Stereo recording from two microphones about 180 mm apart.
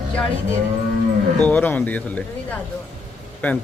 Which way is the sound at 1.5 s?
10° left (ahead or behind).